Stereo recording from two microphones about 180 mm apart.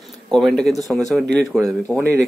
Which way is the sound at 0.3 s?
Centre (ahead or behind).